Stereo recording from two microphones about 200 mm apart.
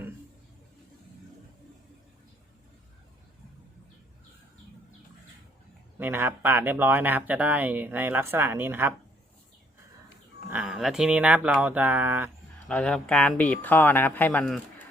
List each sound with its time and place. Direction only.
6.0 s speech: 10° right (ahead or behind)
10.5 s speech: 5° right (ahead or behind)
12.6 s speech: 5° left (ahead or behind)